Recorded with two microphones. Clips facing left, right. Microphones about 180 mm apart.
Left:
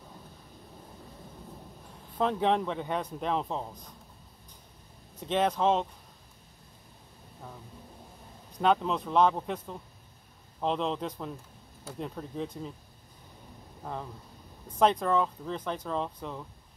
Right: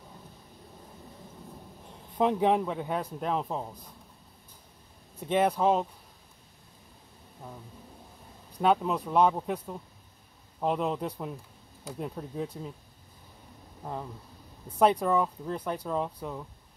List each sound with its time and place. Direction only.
2.1 s speech: 15° right (ahead or behind)
5.2 s speech: 10° right (ahead or behind)
8.5 s speech: 10° right (ahead or behind)
14.8 s speech: 10° right (ahead or behind)